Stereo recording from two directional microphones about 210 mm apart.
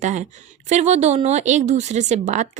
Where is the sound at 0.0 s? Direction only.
35° right (ahead or behind).